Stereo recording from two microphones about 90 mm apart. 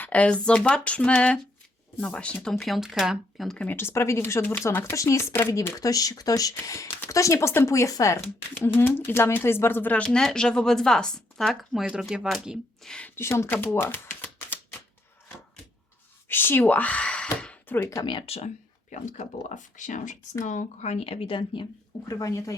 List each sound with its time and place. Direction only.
0.0 s speech: 15° left (ahead or behind); by 3.6 s centre (ahead or behind)
3.6 s speech: 25° left (ahead or behind)
5.8 s speech: 40° left (ahead or behind)
8.5 s speech: 25° left (ahead or behind)
9.9 s speech: 10° left (ahead or behind); by 12.5 s 10° right (ahead or behind)
12.8 s a woman's voice: 10° left (ahead or behind)
13.1 s speech: 30° left (ahead or behind)
13.7 s typewriter: 25° left (ahead or behind)
16.3 s speech: 25° left (ahead or behind)
17.2 s gasp: 15° left (ahead or behind)
18.0 s speech: 70° left (ahead or behind)
21.0 s speech: 90° left; by 21.7 s 70° left (ahead or behind)
22.0 s speech: 40° left (ahead or behind)